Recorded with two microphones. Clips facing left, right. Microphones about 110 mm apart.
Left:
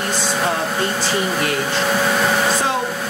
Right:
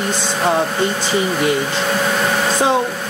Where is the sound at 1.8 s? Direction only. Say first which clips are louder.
Even; centre (ahead or behind).